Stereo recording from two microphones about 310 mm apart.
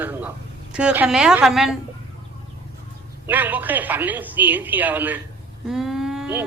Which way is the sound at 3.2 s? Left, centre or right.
Centre.